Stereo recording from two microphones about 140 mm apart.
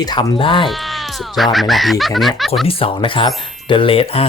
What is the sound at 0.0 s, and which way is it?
Speech, 30° left (ahead or behind).